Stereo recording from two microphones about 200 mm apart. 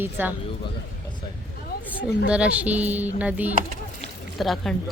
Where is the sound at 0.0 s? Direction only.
10° right (ahead or behind).